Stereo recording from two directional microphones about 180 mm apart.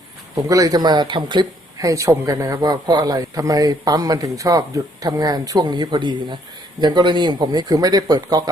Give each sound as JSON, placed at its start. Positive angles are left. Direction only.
{"t": 0.3, "sound": "speech", "side_deg": -20}